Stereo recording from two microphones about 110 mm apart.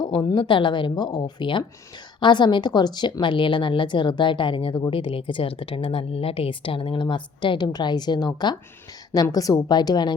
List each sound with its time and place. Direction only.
0.0 s a woman's voice: 40° left (ahead or behind)